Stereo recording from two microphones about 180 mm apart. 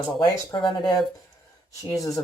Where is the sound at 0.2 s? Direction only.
25° left (ahead or behind).